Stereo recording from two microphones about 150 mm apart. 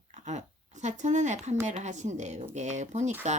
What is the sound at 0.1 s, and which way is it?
A woman's voice, 50° right (ahead or behind).